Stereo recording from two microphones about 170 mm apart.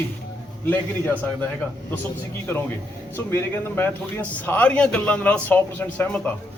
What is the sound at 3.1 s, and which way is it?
A man's voice, 10° left (ahead or behind).